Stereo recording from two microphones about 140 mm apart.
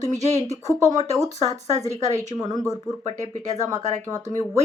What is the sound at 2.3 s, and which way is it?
Speech, 30° right (ahead or behind).